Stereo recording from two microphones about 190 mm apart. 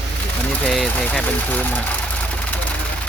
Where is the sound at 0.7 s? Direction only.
5° left (ahead or behind).